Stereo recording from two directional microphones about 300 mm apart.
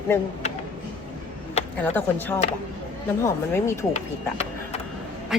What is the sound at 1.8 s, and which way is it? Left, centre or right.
Speech, centre.